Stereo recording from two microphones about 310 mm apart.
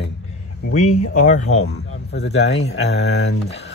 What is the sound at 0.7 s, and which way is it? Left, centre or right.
Speech, left.